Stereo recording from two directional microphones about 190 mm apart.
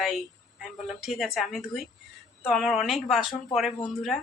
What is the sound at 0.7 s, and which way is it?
Speech, centre (ahead or behind).